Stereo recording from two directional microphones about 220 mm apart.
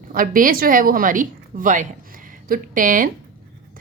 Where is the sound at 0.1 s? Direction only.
40° right (ahead or behind).